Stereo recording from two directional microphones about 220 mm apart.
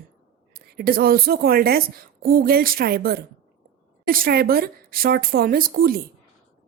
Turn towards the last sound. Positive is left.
turn(degrees=-40)  # may be behind; listen again after turning